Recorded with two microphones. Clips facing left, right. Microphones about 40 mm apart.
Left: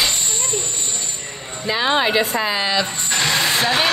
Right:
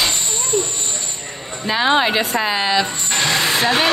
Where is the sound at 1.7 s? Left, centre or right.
Right.